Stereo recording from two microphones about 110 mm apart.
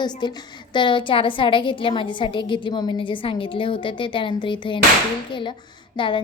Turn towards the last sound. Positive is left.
turn(degrees=50)  # may be behind; listen again after turning